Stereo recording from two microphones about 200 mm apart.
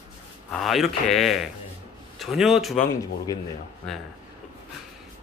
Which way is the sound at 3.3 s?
15° left (ahead or behind).